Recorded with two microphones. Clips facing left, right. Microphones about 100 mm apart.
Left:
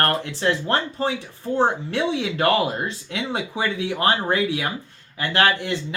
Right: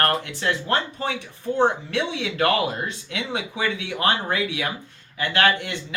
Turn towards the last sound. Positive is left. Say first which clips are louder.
# left 1 dB
turn(degrees=30)  # may be behind; listen again after turning